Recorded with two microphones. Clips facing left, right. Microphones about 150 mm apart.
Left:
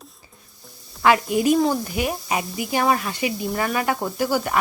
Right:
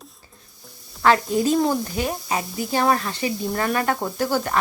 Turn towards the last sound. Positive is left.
turn(degrees=10)  # may be behind; listen again after turning